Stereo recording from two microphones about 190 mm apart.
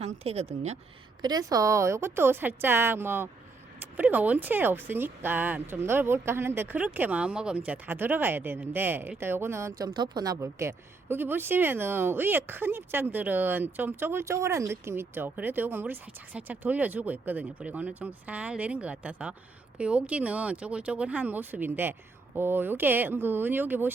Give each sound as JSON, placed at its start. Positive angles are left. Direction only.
{"t": 0.0, "sound": "speech", "side_deg": -35}
{"t": 1.2, "sound": "speech", "side_deg": -20}